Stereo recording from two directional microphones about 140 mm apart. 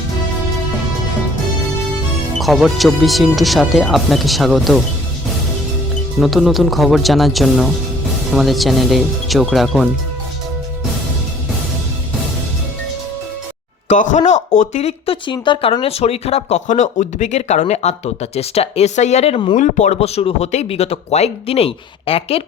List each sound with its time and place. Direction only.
2.4 s speech: centre (ahead or behind)
6.1 s speech: centre (ahead or behind)
13.8 s speech: 65° left (ahead or behind)
19.5 s speech: 60° left (ahead or behind); by 22.4 s 45° left (ahead or behind)